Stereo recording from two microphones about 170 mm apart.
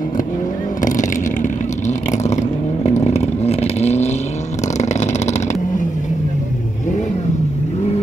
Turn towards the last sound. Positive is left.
turn(degrees=45)  # may be behind; listen again after turning